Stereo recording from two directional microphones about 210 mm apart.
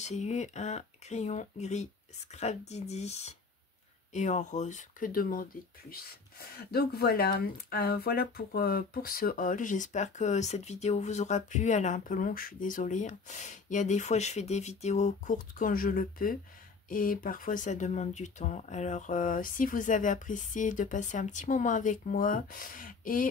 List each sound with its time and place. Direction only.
0.0 s speech: 35° left (ahead or behind)